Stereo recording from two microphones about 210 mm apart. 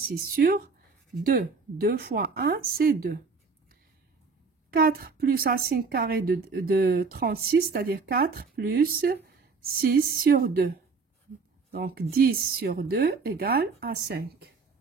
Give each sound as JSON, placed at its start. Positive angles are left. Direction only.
{"t": 0.1, "sound": "a woman's voice", "side_deg": -45}
{"t": 4.7, "sound": "a woman's voice", "side_deg": -45}